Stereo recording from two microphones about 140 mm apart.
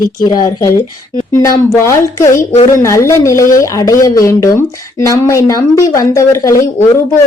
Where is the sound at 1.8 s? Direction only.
20° left (ahead or behind).